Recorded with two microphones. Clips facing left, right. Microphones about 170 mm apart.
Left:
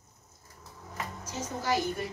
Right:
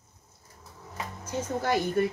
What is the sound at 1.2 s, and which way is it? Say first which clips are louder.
Speech: right 6 dB; 55° right (ahead or behind).